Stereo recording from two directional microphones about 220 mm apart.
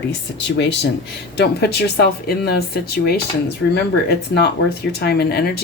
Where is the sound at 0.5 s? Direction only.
50° left (ahead or behind).